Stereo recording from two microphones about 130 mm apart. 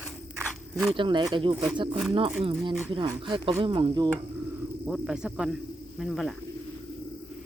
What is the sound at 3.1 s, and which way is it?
Speech, 35° right (ahead or behind).